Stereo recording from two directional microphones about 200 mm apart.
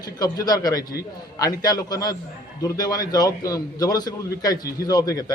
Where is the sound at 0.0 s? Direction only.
20° left (ahead or behind).